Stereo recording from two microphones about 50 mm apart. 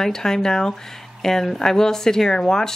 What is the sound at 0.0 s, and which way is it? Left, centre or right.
Speech, centre.